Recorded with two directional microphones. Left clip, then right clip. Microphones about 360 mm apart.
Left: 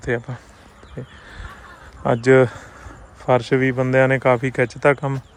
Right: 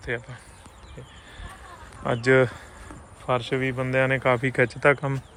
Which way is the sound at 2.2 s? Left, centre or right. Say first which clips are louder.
Left 5 dB; centre.